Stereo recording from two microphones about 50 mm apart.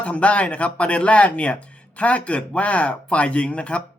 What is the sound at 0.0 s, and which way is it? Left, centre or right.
Speech, left.